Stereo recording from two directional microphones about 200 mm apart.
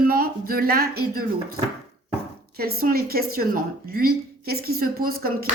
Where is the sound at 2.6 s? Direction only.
50° right (ahead or behind).